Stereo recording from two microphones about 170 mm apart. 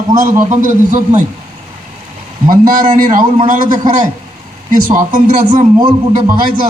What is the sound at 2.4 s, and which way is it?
A man's voice, 55° right (ahead or behind).